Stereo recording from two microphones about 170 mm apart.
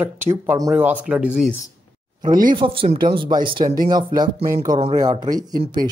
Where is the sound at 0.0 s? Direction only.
10° right (ahead or behind).